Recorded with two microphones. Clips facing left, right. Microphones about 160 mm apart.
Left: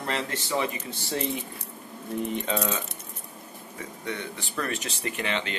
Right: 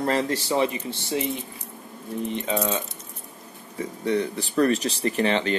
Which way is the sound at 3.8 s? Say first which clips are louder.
Right 10 dB; 35° right (ahead or behind).